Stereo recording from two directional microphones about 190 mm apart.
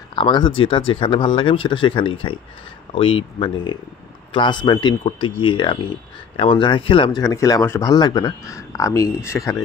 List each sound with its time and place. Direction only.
0.1 s speech: 25° left (ahead or behind)